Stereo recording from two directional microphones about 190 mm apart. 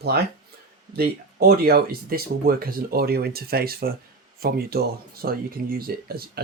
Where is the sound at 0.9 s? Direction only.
55° right (ahead or behind).